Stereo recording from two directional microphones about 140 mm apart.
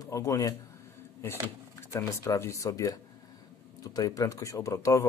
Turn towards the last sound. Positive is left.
turn(degrees=25)  # may be behind; listen again after turning